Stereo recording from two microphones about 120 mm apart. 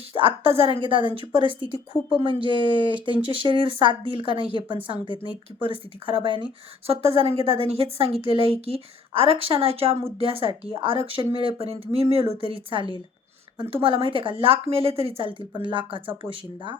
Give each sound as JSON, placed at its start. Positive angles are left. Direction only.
{"t": 0.1, "sound": "speech", "side_deg": -50}